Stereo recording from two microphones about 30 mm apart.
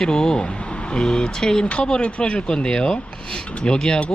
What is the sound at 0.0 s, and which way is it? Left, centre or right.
Speech, left.